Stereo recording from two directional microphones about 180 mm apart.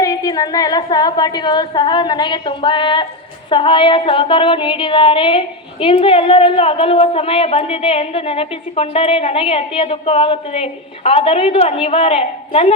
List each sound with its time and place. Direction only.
0.0 s a woman's voice: 20° left (ahead or behind)